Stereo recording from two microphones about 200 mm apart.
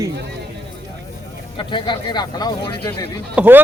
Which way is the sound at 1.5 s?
25° left (ahead or behind).